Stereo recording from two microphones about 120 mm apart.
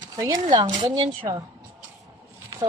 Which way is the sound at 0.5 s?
35° right (ahead or behind).